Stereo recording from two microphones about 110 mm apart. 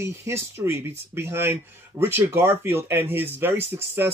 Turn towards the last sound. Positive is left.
turn(degrees=-20)  # may be behind; listen again after turning